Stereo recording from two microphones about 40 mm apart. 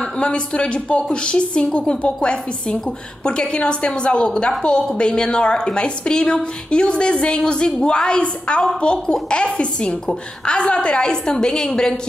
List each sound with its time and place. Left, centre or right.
0.2 s a woman's voice: left